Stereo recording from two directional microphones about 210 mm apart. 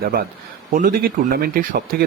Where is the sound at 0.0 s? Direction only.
45° right (ahead or behind).